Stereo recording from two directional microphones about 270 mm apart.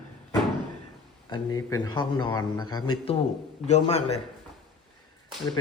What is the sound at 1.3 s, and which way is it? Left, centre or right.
A man's voice, centre.